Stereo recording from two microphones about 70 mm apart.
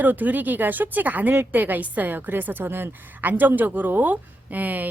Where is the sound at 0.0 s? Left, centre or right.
Right.